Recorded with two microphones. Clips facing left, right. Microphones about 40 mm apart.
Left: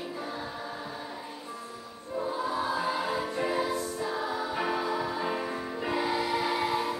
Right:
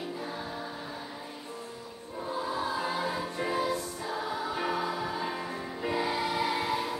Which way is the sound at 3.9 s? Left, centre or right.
Centre.